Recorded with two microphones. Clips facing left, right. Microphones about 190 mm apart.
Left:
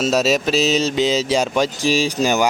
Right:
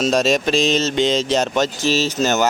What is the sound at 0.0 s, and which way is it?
Speech, 5° left (ahead or behind).